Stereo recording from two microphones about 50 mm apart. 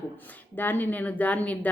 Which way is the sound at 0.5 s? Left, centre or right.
Left.